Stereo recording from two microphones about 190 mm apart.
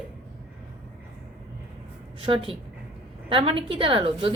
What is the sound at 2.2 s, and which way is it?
A woman's voice, 30° right (ahead or behind).